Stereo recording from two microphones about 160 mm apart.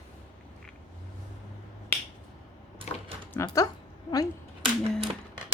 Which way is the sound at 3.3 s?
20° left (ahead or behind).